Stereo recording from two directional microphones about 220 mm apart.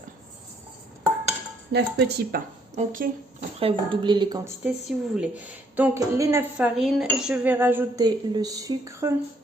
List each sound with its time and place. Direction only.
1.7 s speech: 50° right (ahead or behind)
3.6 s speech: 25° right (ahead or behind)
4.6 s cutlery: 5° right (ahead or behind)
6.7 s cutlery: centre (ahead or behind)